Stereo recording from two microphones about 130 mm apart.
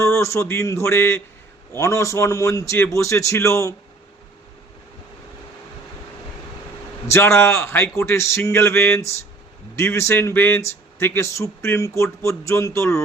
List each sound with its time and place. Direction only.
0.0 s a man's voice: 20° left (ahead or behind)
7.1 s a man's voice: 20° left (ahead or behind)